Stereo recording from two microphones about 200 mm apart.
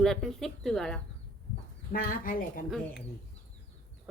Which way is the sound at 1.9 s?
45° left (ahead or behind).